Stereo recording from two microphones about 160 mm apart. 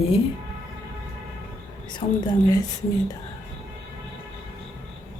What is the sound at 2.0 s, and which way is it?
Speech, 50° left (ahead or behind).